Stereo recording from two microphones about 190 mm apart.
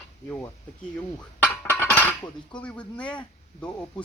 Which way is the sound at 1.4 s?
10° left (ahead or behind).